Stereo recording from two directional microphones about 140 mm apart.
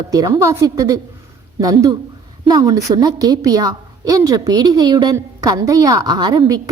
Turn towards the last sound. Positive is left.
turn(degrees=-30)  # may be behind; listen again after turning